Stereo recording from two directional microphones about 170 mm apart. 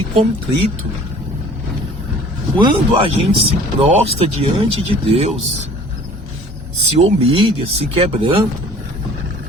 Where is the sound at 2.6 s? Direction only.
30° right (ahead or behind).